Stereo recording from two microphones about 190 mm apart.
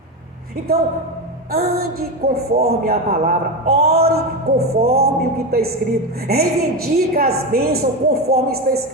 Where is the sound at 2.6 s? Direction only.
55° right (ahead or behind).